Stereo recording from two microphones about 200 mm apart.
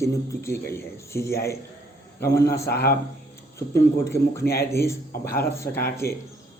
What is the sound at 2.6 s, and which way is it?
Speech, 55° left (ahead or behind).